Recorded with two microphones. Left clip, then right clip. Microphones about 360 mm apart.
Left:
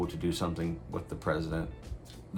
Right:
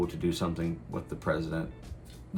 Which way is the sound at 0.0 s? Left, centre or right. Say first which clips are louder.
Right 2 dB; centre.